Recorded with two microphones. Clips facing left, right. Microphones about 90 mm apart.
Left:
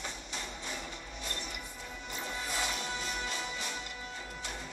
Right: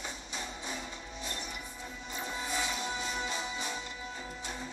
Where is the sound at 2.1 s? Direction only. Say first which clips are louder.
Right 1 dB; 15° right (ahead or behind).